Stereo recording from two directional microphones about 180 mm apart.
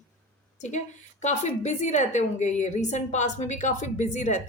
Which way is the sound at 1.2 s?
40° left (ahead or behind).